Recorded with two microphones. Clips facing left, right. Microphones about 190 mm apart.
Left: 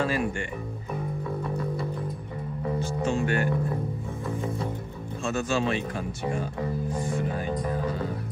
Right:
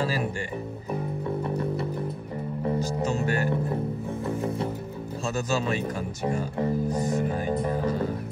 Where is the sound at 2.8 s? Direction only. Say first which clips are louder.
Even; 40° right (ahead or behind).